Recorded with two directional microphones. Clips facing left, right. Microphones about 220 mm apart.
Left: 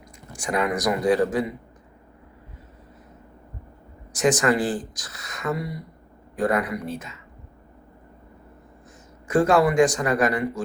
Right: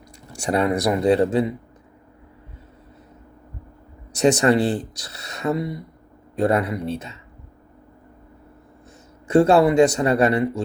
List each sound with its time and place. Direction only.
0.4 s speech: 30° right (ahead or behind)
4.2 s speech: 30° right (ahead or behind)
9.3 s speech: 25° right (ahead or behind)